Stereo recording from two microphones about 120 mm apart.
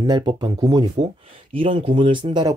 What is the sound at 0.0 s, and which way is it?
Speech, 40° right (ahead or behind).